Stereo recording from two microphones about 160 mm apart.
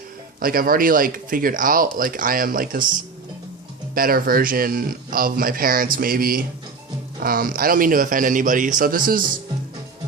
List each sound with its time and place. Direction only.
0.3 s speech: 65° right (ahead or behind)
3.9 s speech: 65° right (ahead or behind)